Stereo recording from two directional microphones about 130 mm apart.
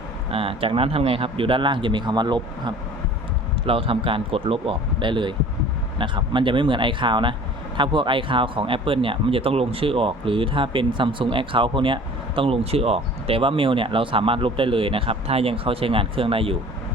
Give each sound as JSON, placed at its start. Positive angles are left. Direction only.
{"t": 0.3, "sound": "speech", "side_deg": -45}